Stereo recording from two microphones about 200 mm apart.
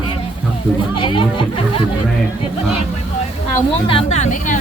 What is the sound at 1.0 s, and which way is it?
Speech, 25° left (ahead or behind).